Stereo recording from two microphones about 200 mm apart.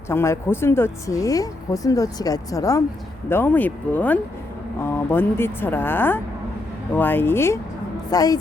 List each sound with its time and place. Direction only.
0.1 s a woman's voice: 10° left (ahead or behind)